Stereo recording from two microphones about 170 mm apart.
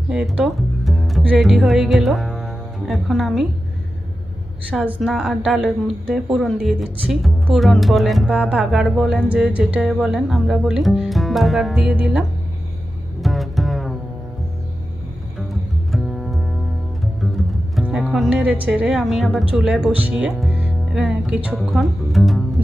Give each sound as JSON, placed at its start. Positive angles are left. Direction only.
{"t": 0.1, "sound": "speech", "side_deg": -5}
{"t": 4.6, "sound": "a woman's voice", "side_deg": -10}
{"t": 13.2, "sound": "music", "side_deg": 0}
{"t": 15.9, "sound": "double bass", "side_deg": 0}
{"t": 17.7, "sound": "speech", "side_deg": 0}